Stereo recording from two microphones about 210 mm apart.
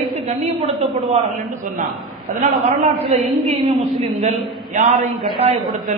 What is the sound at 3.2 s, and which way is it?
A woman's voice, centre (ahead or behind).